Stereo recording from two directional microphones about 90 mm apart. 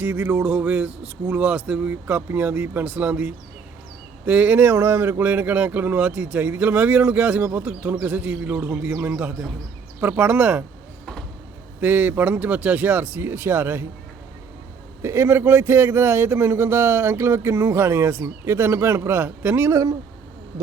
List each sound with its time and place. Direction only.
0.0 s speech: 25° right (ahead or behind)
11.8 s speech: 20° right (ahead or behind)
15.0 s speech: 30° right (ahead or behind)